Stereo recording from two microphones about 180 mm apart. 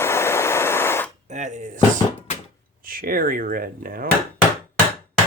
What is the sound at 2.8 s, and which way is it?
Speech, 50° right (ahead or behind).